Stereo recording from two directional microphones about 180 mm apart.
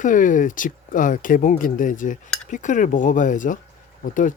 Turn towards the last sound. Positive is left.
turn(degrees=45)  # may be behind; listen again after turning